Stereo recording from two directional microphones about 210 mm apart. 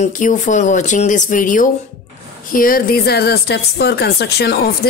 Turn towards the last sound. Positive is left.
turn(degrees=50)  # may be behind; listen again after turning